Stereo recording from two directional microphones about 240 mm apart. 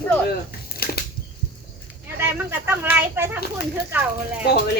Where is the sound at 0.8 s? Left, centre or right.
Left.